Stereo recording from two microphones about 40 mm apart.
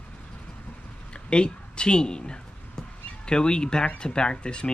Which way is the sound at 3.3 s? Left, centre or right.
Left.